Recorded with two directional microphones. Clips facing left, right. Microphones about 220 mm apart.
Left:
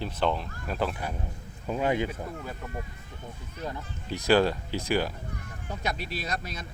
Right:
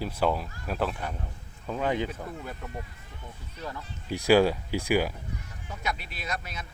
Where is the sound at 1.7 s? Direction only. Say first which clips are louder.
Left 1 dB; 10° left (ahead or behind).